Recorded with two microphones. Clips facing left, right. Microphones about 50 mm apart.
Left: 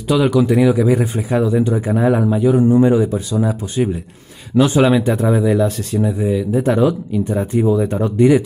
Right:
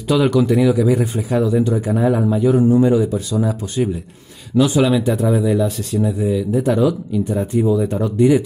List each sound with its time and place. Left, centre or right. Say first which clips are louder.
0.1 s a man's voice: left 1 dB; centre
0.6 s speech: left 1 dB; left
4.6 s speech: left 2 dB; left